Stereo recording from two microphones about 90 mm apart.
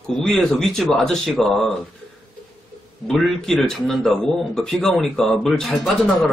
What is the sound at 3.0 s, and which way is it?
Speech, 5° left (ahead or behind).